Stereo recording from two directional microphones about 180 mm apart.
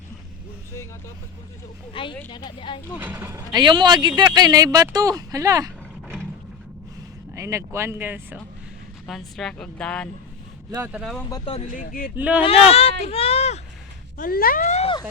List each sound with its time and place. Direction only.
1.9 s speech: 30° left (ahead or behind)
3.0 s speech: 10° right (ahead or behind)
7.3 s speech: 15° right (ahead or behind)
9.0 s speech: centre (ahead or behind)
10.7 s speech: 15° right (ahead or behind)
11.3 s speech: 20° left (ahead or behind)
11.7 s a sound: 50° left (ahead or behind)
12.1 s speech: 10° right (ahead or behind)
12.4 s speech: 35° left (ahead or behind)
14.2 s a sound: 55° left (ahead or behind)
14.8 s a sound: 30° left (ahead or behind)